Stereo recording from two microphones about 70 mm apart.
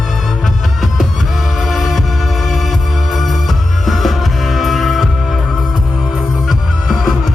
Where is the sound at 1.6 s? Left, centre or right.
Centre.